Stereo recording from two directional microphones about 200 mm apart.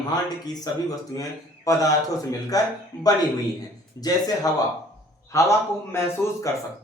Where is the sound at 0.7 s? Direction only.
20° left (ahead or behind).